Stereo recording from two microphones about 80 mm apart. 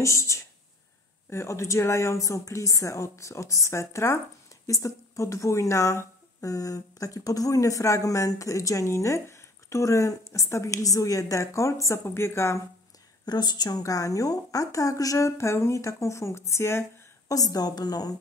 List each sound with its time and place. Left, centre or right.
0.0 s speech: left
13.2 s a woman's voice: left
17.3 s a woman's voice: left